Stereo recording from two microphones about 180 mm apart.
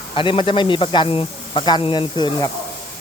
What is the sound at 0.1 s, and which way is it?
Speech, 30° left (ahead or behind).